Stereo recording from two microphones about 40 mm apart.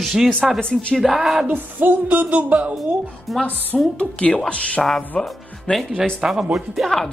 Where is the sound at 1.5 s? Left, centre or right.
Right.